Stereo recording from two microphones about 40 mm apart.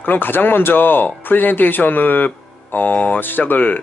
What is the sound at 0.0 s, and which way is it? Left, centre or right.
Speech, left.